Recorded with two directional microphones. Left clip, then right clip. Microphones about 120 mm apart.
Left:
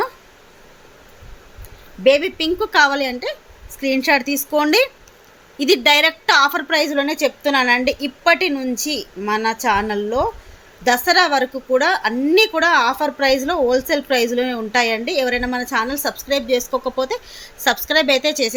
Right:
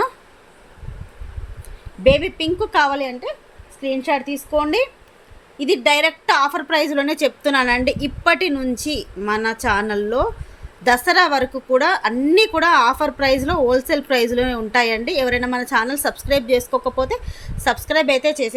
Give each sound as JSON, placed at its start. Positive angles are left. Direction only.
{"t": 2.0, "sound": "a woman's voice", "side_deg": 0}
{"t": 3.0, "sound": "a woman's voice", "side_deg": 15}
{"t": 5.5, "sound": "a woman's voice", "side_deg": 10}
{"t": 6.7, "sound": "a woman's voice", "side_deg": -15}